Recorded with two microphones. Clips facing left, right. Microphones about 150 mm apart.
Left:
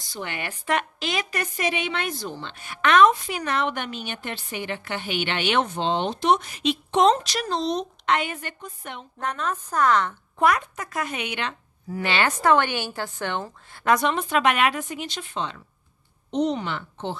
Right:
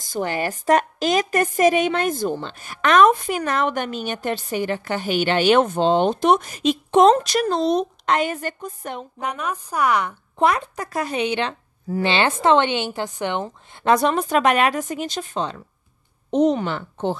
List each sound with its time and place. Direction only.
0.0 s a woman's voice: 45° right (ahead or behind)
9.2 s a woman's voice: 10° right (ahead or behind)
10.4 s speech: 30° right (ahead or behind)
13.9 s a woman's voice: 40° right (ahead or behind)